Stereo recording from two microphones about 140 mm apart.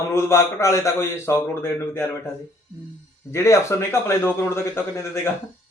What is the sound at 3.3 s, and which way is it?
A man's voice, 20° left (ahead or behind).